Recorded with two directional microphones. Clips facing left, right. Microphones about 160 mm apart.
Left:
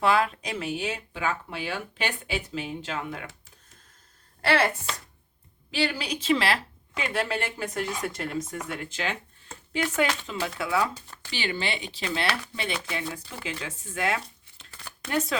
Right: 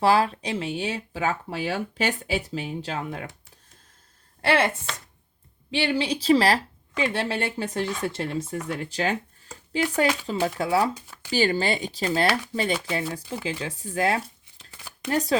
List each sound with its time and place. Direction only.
0.0 s speech: 35° right (ahead or behind)
4.4 s a woman's voice: 25° right (ahead or behind)
10.2 s speech: 35° right (ahead or behind)